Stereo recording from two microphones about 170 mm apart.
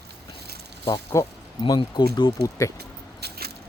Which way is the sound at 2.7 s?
70° right (ahead or behind).